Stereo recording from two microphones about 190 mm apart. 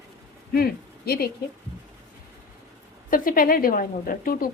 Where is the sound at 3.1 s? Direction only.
45° left (ahead or behind).